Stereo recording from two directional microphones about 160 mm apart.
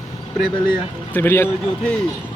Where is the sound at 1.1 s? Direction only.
15° left (ahead or behind).